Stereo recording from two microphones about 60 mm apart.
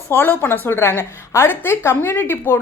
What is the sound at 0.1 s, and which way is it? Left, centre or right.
A woman's voice, left.